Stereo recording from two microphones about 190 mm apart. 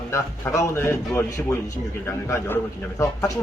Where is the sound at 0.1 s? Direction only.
15° left (ahead or behind).